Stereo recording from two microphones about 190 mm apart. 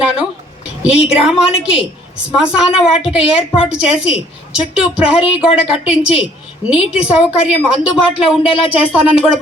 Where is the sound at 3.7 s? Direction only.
5° right (ahead or behind).